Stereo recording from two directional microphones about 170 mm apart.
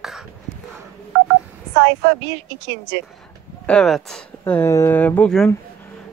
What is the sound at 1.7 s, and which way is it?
Speech, 90° right.